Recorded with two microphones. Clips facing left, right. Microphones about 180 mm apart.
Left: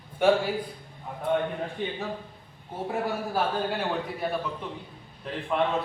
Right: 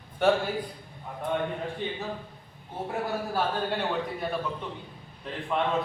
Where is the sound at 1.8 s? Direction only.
5° left (ahead or behind).